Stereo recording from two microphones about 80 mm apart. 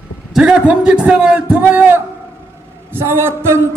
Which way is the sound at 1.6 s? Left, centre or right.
Right.